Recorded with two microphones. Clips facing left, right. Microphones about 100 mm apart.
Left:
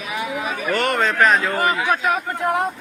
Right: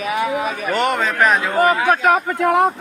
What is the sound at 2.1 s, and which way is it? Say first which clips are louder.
Speech: right 5 dB; 90° right.